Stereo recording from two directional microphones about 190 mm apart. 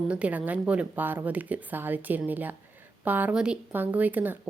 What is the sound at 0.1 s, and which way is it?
A woman's voice, 5° right (ahead or behind).